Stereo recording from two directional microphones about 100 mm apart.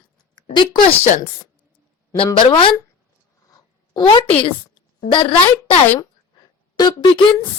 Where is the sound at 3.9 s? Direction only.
50° left (ahead or behind).